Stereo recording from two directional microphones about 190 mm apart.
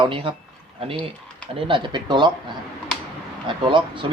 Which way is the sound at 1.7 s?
25° right (ahead or behind).